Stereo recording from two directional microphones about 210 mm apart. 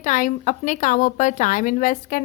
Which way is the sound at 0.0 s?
35° left (ahead or behind).